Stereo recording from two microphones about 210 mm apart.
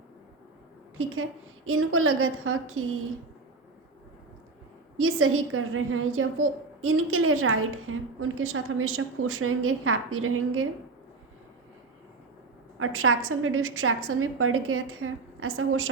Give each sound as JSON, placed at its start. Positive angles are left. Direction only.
{"t": 0.9, "sound": "a woman's voice", "side_deg": -80}
{"t": 4.9, "sound": "a woman's voice", "side_deg": -80}
{"t": 12.8, "sound": "a woman's voice", "side_deg": -80}